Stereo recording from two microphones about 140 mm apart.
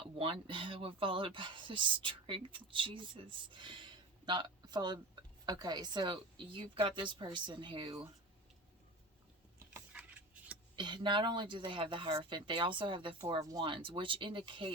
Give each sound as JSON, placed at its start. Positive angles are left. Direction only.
{"t": 0.2, "sound": "speech", "side_deg": -40}
{"t": 9.7, "sound": "a sound", "side_deg": -10}
{"t": 10.8, "sound": "speech", "side_deg": -35}